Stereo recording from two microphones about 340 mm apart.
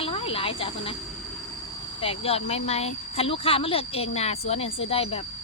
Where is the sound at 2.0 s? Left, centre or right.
Centre.